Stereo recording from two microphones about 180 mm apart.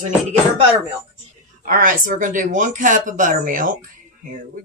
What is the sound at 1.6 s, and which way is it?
Speech, 50° right (ahead or behind).